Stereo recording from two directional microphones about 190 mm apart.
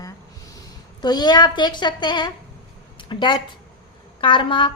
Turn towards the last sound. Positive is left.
turn(degrees=25)  # may be behind; listen again after turning